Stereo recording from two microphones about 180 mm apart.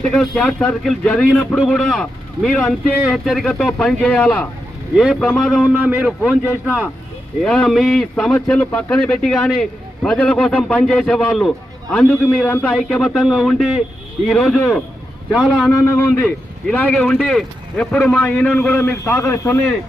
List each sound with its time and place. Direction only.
0.0 s a man's voice: 5° left (ahead or behind)
5.5 s a man's voice: 5° right (ahead or behind)
7.4 s a man's voice: 5° left (ahead or behind)
15.7 s a man's voice: 15° left (ahead or behind)